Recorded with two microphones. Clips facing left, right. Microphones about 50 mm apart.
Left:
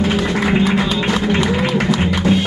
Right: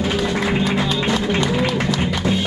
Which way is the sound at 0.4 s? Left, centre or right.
Centre.